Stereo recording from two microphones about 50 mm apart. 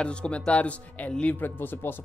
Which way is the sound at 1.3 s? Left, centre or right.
Left.